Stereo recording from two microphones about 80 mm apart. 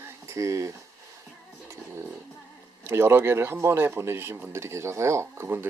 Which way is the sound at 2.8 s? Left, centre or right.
Right.